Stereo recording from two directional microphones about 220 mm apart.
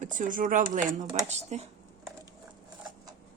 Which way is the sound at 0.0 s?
35° right (ahead or behind).